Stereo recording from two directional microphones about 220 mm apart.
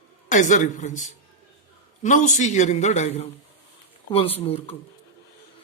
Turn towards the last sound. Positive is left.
turn(degrees=25)  # may be behind; listen again after turning